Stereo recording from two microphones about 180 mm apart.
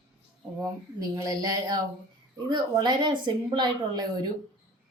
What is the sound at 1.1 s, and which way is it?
A woman's voice, 20° right (ahead or behind).